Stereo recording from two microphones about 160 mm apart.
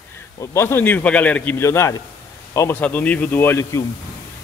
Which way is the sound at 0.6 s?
15° left (ahead or behind).